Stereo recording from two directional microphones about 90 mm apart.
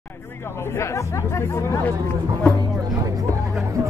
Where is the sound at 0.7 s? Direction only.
30° left (ahead or behind).